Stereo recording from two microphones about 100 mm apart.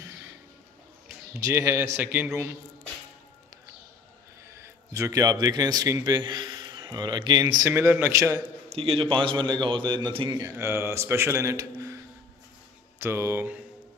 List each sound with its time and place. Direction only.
1.4 s a man's voice: 25° right (ahead or behind)
4.5 s a man's voice: 30° right (ahead or behind)
8.1 s a man's voice: 30° right (ahead or behind)
8.6 s a man's voice: 70° right (ahead or behind); by 10.3 s 55° right (ahead or behind)
10.6 s a man's voice: 25° right (ahead or behind)
13.0 s a man's voice: 25° right (ahead or behind)